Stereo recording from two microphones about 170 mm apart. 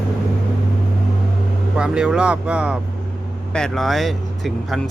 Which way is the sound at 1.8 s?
5° right (ahead or behind).